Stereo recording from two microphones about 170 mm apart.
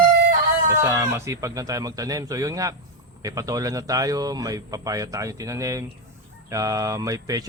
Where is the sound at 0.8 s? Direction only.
15° right (ahead or behind).